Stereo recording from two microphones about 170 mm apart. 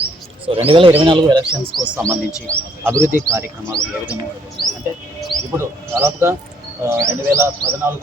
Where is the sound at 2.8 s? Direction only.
15° right (ahead or behind).